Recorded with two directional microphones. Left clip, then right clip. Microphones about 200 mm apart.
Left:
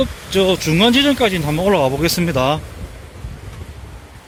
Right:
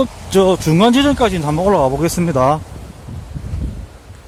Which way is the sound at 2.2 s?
Centre (ahead or behind).